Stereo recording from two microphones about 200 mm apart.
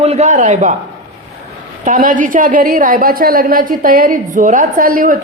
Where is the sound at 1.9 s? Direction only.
45° right (ahead or behind).